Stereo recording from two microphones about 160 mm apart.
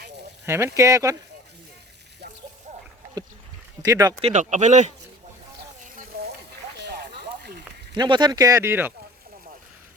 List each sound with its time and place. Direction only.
0.4 s speech: 15° right (ahead or behind)
3.8 s speech: 20° right (ahead or behind)
4.2 s speech: 45° right (ahead or behind)
6.8 s a sound: 80° right
7.9 s speech: 30° right (ahead or behind)